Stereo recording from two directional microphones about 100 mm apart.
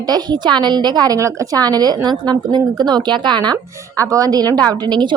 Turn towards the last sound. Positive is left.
turn(degrees=-45)  # may be behind; listen again after turning